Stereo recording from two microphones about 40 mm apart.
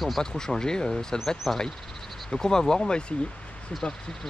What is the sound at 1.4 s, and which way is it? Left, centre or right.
Speech, centre.